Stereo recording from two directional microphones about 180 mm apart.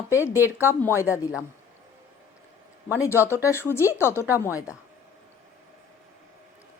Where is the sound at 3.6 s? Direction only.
15° left (ahead or behind).